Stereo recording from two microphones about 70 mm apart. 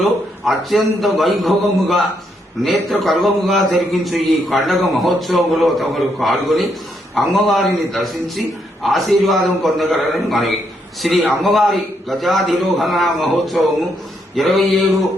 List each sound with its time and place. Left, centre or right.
0.0 s a man's voice: centre